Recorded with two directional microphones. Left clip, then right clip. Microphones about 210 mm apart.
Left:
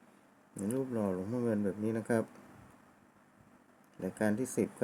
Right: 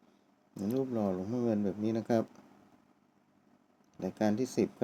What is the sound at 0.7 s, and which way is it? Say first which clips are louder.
Speech: right 2 dB; 15° left (ahead or behind).